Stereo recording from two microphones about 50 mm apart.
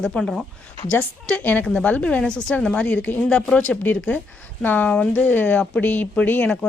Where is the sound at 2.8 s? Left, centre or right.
Left.